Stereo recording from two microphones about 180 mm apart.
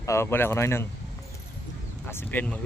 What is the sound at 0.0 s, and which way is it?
Speech, 15° left (ahead or behind).